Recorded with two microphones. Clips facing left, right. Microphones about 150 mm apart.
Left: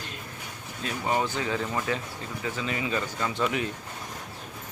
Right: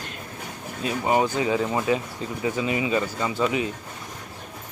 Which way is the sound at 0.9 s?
20° right (ahead or behind).